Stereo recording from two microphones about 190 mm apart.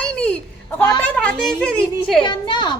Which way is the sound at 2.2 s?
25° left (ahead or behind).